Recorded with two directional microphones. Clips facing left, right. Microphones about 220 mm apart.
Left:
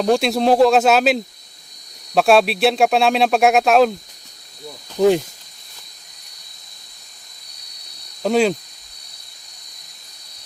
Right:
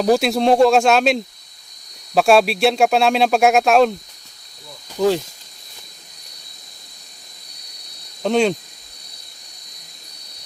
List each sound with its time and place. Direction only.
0.0 s speech: centre (ahead or behind)
4.9 s speech: 15° left (ahead or behind)
8.2 s speech: 5° left (ahead or behind)